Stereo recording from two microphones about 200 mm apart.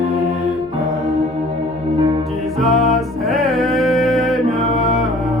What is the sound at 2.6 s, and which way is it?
Music, centre (ahead or behind).